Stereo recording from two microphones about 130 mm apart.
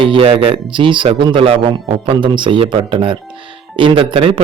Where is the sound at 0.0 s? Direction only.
45° right (ahead or behind).